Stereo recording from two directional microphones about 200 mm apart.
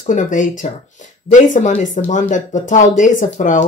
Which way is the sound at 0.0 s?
40° left (ahead or behind).